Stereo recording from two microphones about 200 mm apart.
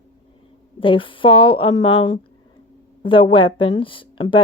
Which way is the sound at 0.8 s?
25° left (ahead or behind).